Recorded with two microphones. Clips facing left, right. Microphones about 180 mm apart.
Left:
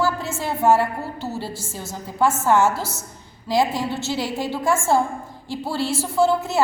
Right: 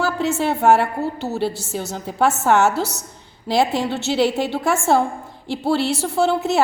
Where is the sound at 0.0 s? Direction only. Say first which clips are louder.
Right 4 dB; 70° right (ahead or behind).